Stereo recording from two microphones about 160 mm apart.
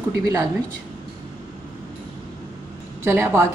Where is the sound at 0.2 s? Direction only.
20° right (ahead or behind).